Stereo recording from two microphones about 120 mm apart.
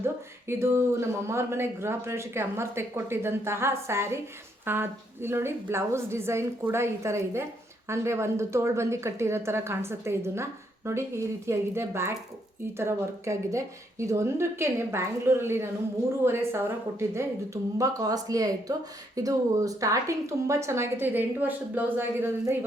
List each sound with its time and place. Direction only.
0.0 s a woman's voice: 20° right (ahead or behind)